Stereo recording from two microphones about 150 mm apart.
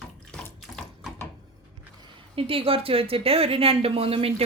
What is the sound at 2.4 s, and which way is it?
A woman's voice, 40° right (ahead or behind).